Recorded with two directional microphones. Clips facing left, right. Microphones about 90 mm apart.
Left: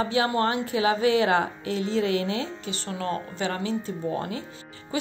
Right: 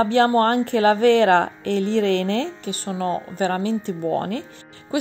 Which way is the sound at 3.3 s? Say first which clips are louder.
Right 6 dB; 45° right (ahead or behind).